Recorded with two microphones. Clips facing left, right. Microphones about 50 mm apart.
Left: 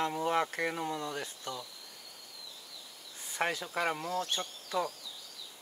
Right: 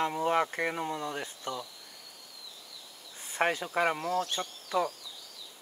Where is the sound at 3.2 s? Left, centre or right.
Right.